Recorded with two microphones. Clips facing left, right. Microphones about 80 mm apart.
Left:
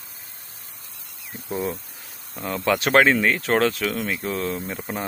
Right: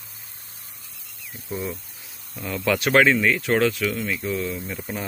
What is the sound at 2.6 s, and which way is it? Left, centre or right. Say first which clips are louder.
Speech: left 1 dB; left.